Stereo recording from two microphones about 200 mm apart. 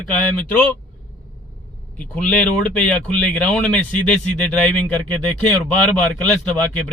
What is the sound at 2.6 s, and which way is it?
A man's voice, 5° left (ahead or behind).